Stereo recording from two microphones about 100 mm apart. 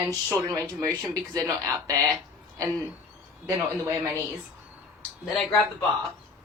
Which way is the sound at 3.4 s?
25° right (ahead or behind).